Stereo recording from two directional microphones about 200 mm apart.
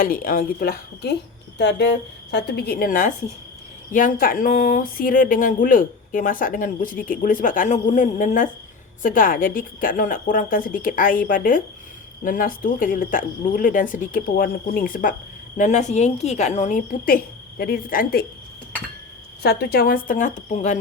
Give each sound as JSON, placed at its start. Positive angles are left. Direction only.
{"t": 0.0, "sound": "speech", "side_deg": 45}
{"t": 1.5, "sound": "a woman's voice", "side_deg": 60}
{"t": 19.4, "sound": "speech", "side_deg": 55}
{"t": 20.1, "sound": "a woman's voice", "side_deg": 40}